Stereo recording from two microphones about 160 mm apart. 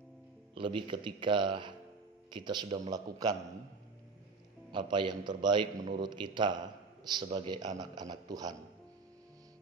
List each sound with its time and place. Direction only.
0.6 s a man's voice: 30° right (ahead or behind)
4.7 s a man's voice: 30° right (ahead or behind)